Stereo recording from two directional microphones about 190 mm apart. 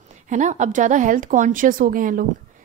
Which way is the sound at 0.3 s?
40° right (ahead or behind).